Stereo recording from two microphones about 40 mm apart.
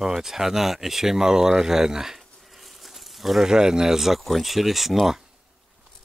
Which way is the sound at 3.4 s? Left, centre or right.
Centre.